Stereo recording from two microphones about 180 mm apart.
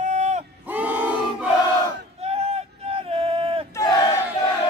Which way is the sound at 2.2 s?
35° right (ahead or behind).